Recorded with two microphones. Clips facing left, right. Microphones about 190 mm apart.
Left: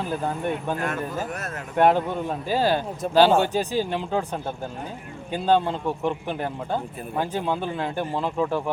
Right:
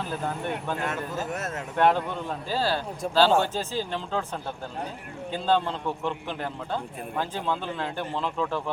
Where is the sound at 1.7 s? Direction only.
15° left (ahead or behind).